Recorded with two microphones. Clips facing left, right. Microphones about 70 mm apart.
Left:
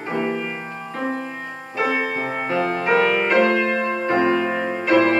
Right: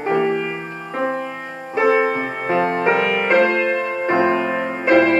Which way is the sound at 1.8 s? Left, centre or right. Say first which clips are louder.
Right 6 dB; right.